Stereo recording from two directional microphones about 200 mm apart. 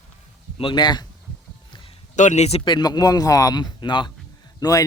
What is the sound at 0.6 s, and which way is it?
A man's voice, 25° left (ahead or behind).